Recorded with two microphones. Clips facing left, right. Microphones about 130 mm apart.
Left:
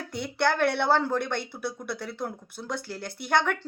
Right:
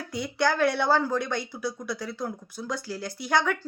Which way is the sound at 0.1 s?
60° left (ahead or behind).